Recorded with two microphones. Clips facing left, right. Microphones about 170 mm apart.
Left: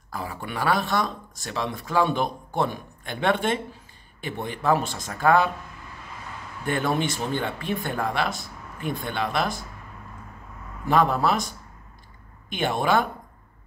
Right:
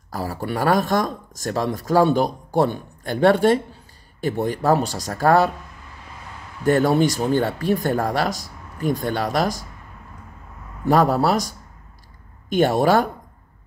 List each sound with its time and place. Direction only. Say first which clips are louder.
0.1 s speech: right 6 dB; 40° right (ahead or behind)
6.6 s speech: right 8 dB; 40° right (ahead or behind)
10.9 s speech: right 4 dB; 40° right (ahead or behind)